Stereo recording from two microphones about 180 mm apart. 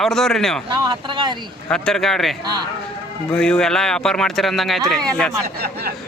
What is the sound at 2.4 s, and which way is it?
Speech, 25° right (ahead or behind).